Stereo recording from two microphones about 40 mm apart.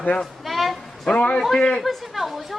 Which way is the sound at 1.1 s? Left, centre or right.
Left.